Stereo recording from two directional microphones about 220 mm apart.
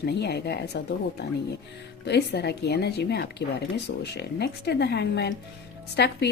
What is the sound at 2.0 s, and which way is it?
Speech, 50° left (ahead or behind).